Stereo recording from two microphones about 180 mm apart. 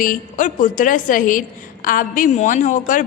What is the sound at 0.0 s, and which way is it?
A woman's voice, 45° left (ahead or behind).